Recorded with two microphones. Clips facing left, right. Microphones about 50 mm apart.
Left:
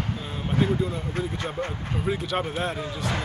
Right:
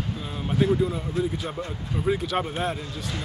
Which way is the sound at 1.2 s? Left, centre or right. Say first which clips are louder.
Right 5 dB; left.